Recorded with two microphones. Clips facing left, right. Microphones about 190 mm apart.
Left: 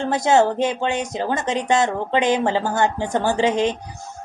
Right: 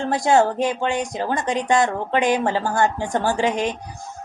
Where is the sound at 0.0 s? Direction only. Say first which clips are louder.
Left 1 dB; 20° left (ahead or behind).